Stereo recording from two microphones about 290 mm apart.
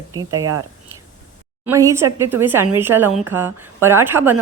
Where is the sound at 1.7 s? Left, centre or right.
Centre.